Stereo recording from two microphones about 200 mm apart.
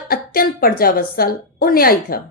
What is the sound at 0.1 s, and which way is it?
A woman's voice, 45° left (ahead or behind).